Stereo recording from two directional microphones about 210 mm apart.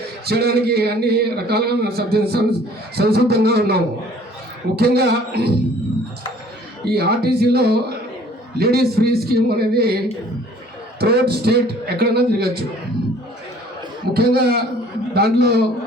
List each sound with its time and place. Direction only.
0.3 s a man's voice: 50° right (ahead or behind)
4.8 s a man's voice: 50° right (ahead or behind)
6.8 s a man's voice: 50° right (ahead or behind)
11.0 s a man's voice: 50° right (ahead or behind)
14.1 s a man's voice: 50° right (ahead or behind)